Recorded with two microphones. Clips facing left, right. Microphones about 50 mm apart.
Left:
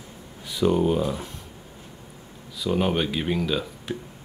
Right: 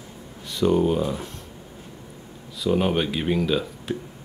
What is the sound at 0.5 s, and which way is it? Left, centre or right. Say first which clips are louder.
Speech: right 1 dB; centre.